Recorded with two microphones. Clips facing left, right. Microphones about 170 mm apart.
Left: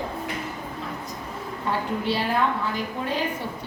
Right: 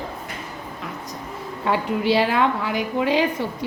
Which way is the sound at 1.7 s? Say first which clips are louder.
Right 6 dB; 90° right.